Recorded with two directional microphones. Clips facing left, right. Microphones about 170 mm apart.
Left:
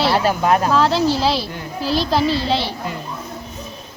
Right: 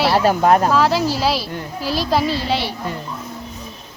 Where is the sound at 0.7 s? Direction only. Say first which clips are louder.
Left 1 dB; 5° right (ahead or behind).